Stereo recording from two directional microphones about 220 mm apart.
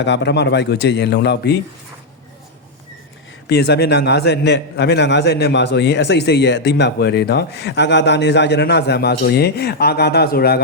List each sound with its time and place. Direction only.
0.0 s a man's voice: 50° left (ahead or behind)
3.5 s a man's voice: 50° left (ahead or behind)